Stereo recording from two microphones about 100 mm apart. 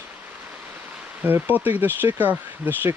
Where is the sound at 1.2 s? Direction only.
20° right (ahead or behind).